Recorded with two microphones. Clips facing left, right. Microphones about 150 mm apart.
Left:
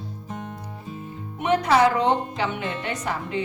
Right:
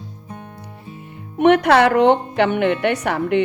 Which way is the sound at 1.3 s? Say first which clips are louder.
Right 7 dB; 70° right (ahead or behind).